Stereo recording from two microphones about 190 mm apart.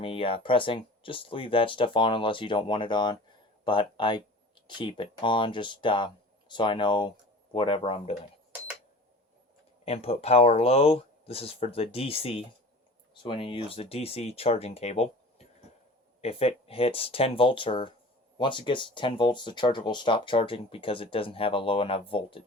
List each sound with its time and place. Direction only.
0.0 s speech: 30° left (ahead or behind)
9.8 s speech: 30° left (ahead or behind)
16.2 s speech: 30° left (ahead or behind)